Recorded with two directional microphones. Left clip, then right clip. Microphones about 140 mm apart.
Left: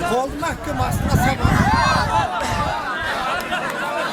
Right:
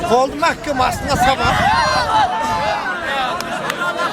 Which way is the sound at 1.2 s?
Centre (ahead or behind).